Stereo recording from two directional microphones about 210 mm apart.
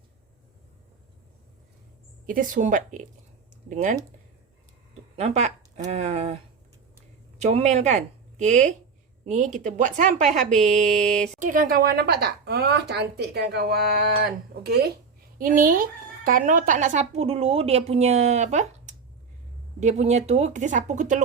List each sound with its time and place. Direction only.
2.2 s a woman's voice: 40° right (ahead or behind)
5.1 s a woman's voice: 30° right (ahead or behind)
10.6 s mantra: centre (ahead or behind)
11.3 s a woman's voice: 40° right (ahead or behind)